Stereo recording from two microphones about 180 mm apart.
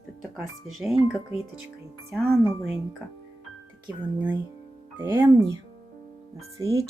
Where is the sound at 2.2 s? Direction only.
15° right (ahead or behind).